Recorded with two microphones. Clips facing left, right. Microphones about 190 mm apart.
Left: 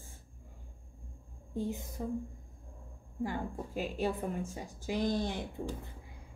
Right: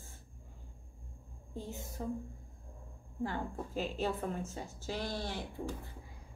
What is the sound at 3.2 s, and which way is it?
Speech, 10° left (ahead or behind).